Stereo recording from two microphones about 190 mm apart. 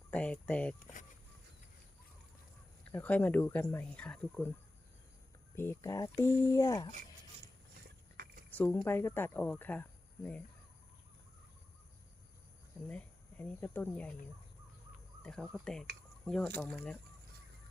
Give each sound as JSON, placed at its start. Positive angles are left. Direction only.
{"t": 0.1, "sound": "speech", "side_deg": 5}
{"t": 2.9, "sound": "speech", "side_deg": 10}
{"t": 5.5, "sound": "speech", "side_deg": 15}
{"t": 8.1, "sound": "a sound", "side_deg": -50}
{"t": 8.4, "sound": "speech", "side_deg": 10}
{"t": 12.9, "sound": "speech", "side_deg": 10}
{"t": 15.2, "sound": "speech", "side_deg": 5}